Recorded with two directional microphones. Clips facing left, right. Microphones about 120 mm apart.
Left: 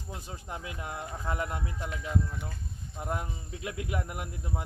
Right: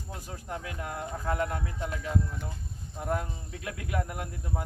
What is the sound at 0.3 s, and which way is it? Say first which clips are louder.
Speech: right 4 dB; 20° left (ahead or behind).